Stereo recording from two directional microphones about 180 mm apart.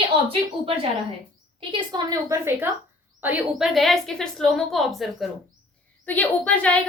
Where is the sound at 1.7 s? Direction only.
20° right (ahead or behind); by 6.8 s 10° left (ahead or behind).